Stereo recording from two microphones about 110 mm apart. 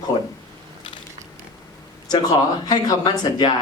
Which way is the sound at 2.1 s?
40° left (ahead or behind).